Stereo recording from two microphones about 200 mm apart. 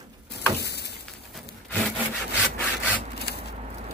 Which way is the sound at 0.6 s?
55° left (ahead or behind).